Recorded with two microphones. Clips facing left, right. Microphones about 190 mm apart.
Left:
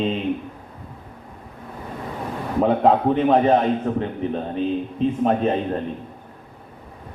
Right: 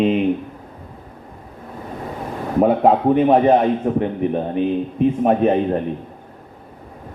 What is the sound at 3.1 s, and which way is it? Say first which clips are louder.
A man's voice: right 3 dB; 15° right (ahead or behind).